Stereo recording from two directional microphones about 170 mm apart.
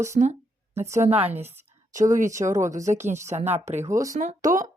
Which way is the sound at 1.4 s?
15° right (ahead or behind).